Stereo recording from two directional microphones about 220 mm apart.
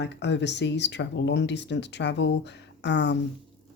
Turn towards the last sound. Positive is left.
turn(degrees=50)  # may be behind; listen again after turning